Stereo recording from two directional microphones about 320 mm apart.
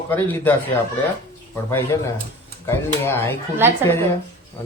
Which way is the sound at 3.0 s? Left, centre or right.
Centre.